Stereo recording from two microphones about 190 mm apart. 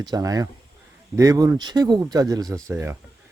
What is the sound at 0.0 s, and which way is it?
Speech, 20° right (ahead or behind).